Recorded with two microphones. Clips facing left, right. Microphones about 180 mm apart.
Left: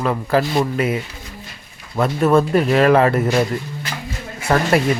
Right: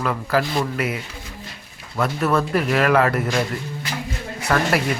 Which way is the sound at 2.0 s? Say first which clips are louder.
Left 5 dB; 25° left (ahead or behind).